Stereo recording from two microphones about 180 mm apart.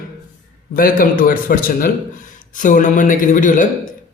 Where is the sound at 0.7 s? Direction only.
55° left (ahead or behind).